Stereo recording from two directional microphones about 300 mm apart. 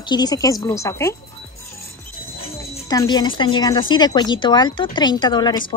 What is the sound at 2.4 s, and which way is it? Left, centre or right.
Speech, centre.